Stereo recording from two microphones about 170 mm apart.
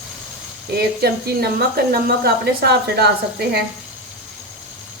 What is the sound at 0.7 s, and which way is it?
A woman's voice, 65° right (ahead or behind).